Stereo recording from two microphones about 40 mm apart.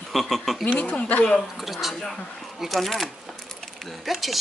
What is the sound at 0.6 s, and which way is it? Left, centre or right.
Speech, left.